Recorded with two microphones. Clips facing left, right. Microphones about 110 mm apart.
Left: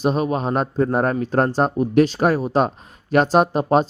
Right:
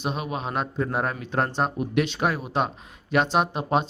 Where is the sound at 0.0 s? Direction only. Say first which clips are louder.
Left 9 dB; 40° left (ahead or behind).